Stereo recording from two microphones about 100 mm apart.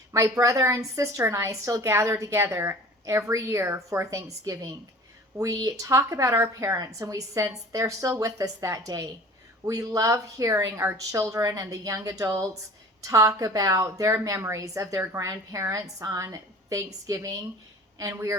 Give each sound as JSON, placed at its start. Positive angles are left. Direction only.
{"t": 0.1, "sound": "a woman's voice", "side_deg": -35}